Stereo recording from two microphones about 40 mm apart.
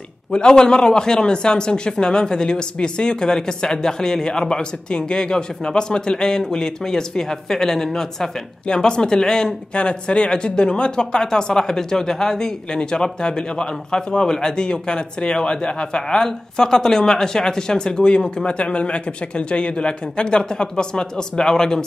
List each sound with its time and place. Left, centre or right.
0.3 s speech: centre
8.6 s speech: left
9.8 s speech: left